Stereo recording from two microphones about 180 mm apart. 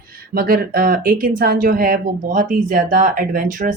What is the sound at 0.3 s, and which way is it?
Speech, 55° right (ahead or behind).